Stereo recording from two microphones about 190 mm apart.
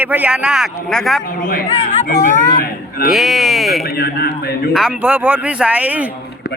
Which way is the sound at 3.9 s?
55° left (ahead or behind).